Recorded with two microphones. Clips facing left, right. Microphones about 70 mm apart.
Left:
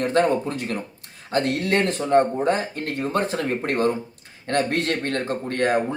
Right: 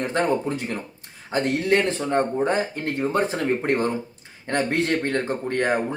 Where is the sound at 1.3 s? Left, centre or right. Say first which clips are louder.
Right 1 dB; centre.